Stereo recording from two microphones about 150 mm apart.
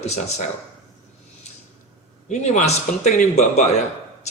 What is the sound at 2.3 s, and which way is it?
Speech, 50° left (ahead or behind).